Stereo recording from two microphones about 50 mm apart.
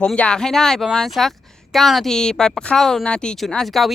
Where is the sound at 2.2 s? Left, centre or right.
Centre.